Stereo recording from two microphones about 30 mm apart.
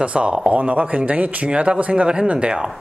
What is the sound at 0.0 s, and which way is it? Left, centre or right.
Speech, right.